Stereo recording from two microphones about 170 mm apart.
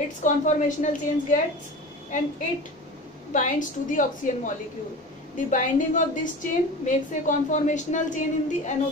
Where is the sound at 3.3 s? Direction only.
50° left (ahead or behind).